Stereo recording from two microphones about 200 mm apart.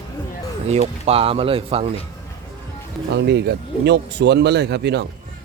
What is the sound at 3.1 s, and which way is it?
Speech, 55° right (ahead or behind).